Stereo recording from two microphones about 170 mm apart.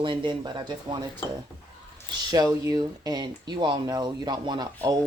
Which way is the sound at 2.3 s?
20° right (ahead or behind).